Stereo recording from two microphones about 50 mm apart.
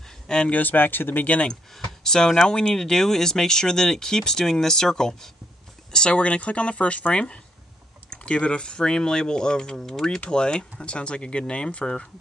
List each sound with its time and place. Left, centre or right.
0.5 s speech: left
1.2 s speech: left
1.5 s speech: centre